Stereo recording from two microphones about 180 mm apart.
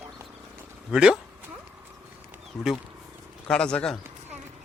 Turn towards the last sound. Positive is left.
turn(degrees=5)  # may be behind; listen again after turning